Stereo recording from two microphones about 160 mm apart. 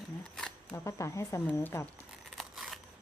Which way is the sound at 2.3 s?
Centre (ahead or behind).